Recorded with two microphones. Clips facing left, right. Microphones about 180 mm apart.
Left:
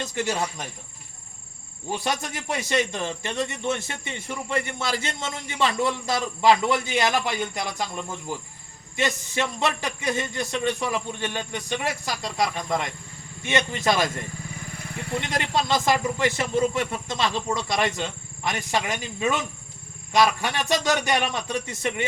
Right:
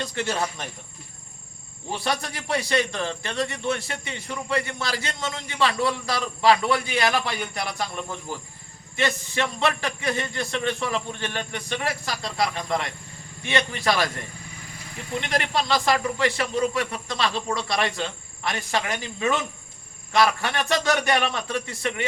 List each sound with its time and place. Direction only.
0.0 s a man's voice: 20° left (ahead or behind)
1.9 s a man's voice: 20° left (ahead or behind)
15.3 s a man's voice: 20° left (ahead or behind)